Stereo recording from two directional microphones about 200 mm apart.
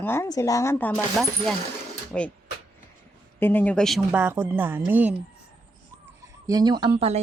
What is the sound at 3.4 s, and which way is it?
Speech, 10° left (ahead or behind).